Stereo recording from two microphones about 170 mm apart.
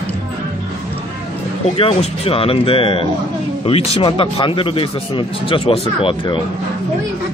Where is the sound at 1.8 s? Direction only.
35° left (ahead or behind).